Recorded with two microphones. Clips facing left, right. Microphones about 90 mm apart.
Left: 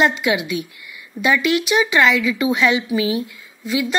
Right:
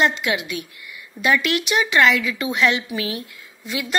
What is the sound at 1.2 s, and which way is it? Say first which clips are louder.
A woman's voice: left 2 dB; centre (ahead or behind).